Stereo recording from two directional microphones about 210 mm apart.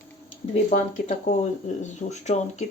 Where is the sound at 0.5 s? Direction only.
35° left (ahead or behind).